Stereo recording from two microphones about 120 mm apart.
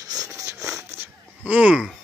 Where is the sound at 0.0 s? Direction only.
30° right (ahead or behind).